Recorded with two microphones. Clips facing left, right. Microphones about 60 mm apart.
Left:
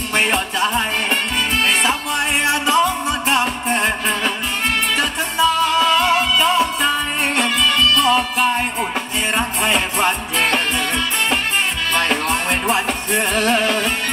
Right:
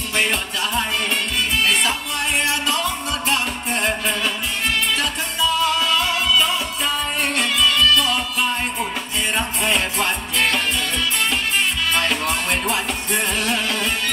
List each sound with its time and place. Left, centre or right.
0.1 s music: left
11.9 s music: left